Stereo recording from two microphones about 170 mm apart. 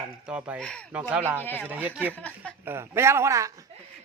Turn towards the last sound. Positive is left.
turn(degrees=-15)  # may be behind; listen again after turning